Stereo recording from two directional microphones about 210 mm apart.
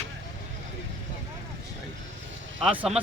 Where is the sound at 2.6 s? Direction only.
5° right (ahead or behind).